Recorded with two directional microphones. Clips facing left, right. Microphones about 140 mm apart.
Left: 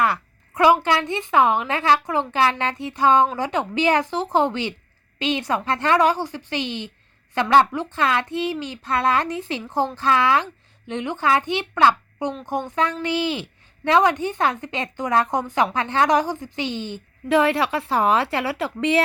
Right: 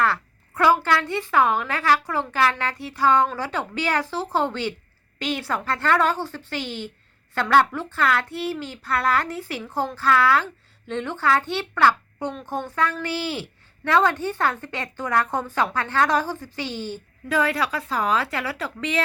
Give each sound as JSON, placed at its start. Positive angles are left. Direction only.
{"t": 0.0, "sound": "a woman's voice", "side_deg": 15}